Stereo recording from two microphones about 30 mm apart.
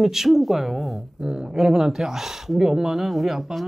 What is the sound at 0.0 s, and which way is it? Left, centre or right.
Speech, centre.